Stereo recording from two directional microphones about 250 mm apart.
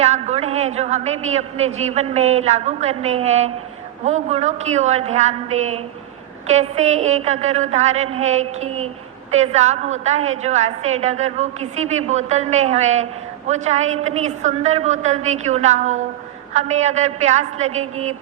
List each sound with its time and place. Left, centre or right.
0.0 s a woman's voice: right